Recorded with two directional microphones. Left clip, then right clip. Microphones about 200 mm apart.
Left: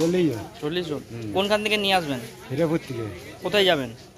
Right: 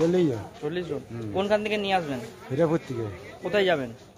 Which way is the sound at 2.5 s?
10° right (ahead or behind).